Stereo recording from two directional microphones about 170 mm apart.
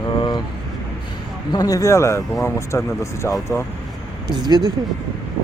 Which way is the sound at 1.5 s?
20° left (ahead or behind).